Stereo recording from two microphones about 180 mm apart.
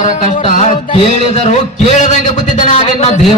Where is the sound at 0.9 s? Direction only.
35° left (ahead or behind).